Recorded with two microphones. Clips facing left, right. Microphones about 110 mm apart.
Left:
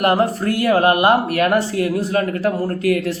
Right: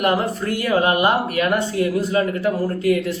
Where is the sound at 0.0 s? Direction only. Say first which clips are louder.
Left 3 dB; 45° left (ahead or behind).